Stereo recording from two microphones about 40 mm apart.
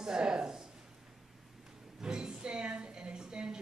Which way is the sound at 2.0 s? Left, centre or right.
Centre.